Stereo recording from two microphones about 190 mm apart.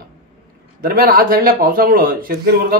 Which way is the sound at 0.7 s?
50° right (ahead or behind).